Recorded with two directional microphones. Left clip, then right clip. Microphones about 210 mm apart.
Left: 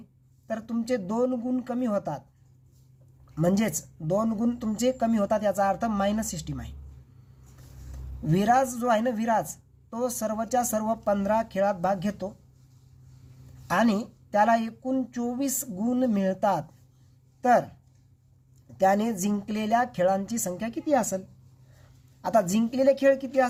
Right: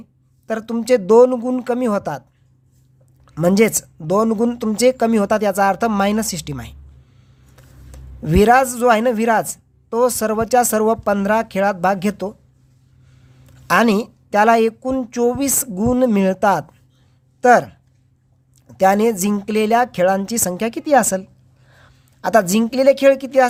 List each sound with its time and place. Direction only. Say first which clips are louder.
0.4 s speech: right 11 dB; 50° right (ahead or behind)
3.3 s speech: right 12 dB; 45° right (ahead or behind)
8.3 s speech: right 10 dB; 45° right (ahead or behind)
13.7 s speech: right 10 dB; 45° right (ahead or behind)
18.8 s speech: right 9 dB; 45° right (ahead or behind)
22.2 s speech: right 9 dB; 45° right (ahead or behind)